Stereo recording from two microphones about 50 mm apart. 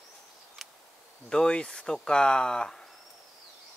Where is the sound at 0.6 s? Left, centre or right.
Centre.